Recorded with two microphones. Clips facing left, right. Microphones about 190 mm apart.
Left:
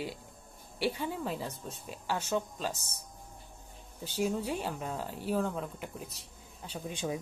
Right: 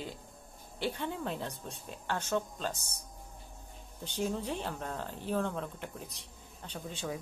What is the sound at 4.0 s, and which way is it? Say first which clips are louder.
Speech: left 2 dB; 5° left (ahead or behind).